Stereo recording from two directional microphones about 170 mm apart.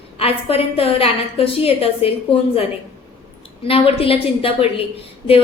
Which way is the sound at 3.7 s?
35° left (ahead or behind).